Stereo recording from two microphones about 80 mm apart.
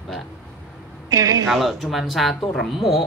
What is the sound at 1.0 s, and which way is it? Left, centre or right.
Speech, right.